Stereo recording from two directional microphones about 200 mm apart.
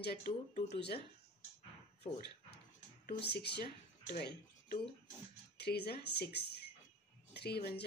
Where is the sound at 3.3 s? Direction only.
55° left (ahead or behind).